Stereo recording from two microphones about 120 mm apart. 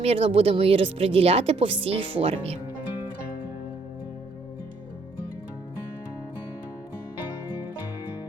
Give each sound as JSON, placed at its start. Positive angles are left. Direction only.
{"t": 0.0, "sound": "speech", "side_deg": -55}